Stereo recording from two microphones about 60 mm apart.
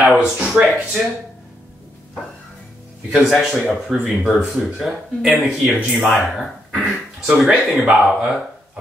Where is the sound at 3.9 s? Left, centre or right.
Centre.